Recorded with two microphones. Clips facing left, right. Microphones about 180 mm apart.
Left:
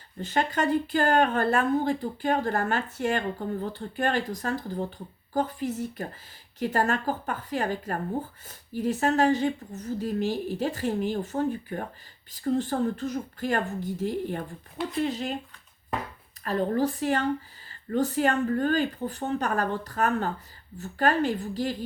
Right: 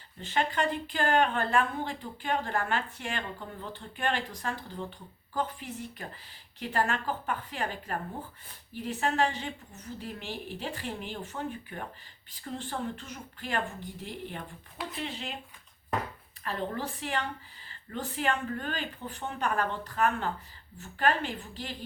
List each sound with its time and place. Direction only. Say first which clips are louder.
0.2 s speech: left 3 dB; 40° left (ahead or behind)
16.4 s speech: left 9 dB; 40° left (ahead or behind)